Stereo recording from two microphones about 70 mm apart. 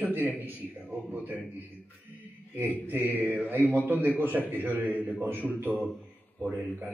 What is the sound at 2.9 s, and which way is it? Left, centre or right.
A man's voice, right.